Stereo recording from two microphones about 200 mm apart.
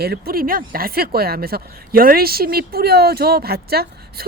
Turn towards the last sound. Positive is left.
turn(degrees=-50)  # may be behind; listen again after turning